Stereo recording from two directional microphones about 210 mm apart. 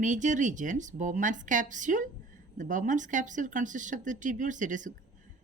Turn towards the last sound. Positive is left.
turn(degrees=-35)  # may be behind; listen again after turning